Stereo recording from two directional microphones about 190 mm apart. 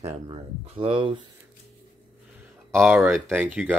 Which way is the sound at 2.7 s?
5° right (ahead or behind).